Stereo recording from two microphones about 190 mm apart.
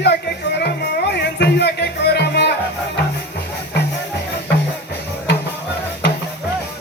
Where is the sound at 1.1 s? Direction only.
60° left (ahead or behind).